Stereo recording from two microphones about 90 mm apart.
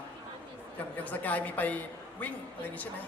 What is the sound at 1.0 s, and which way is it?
A man's voice, 20° left (ahead or behind).